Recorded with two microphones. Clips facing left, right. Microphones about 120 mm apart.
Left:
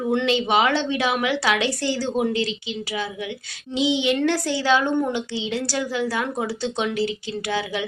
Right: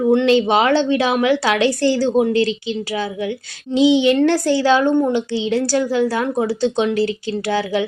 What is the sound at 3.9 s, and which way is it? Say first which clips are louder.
A woman's voice: right 7 dB; 40° right (ahead or behind).